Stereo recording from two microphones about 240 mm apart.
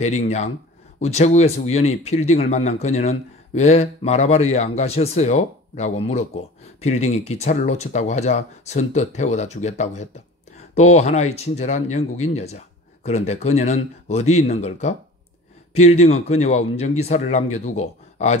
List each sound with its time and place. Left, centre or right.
0.0 s speech: left